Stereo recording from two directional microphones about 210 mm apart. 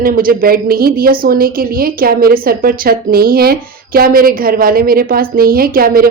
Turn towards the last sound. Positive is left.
turn(degrees=-45)  # may be behind; listen again after turning